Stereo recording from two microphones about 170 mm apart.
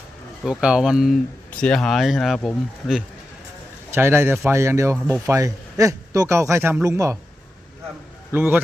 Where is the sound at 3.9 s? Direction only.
15° right (ahead or behind).